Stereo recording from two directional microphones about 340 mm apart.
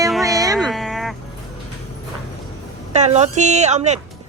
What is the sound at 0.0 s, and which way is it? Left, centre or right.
Music, centre.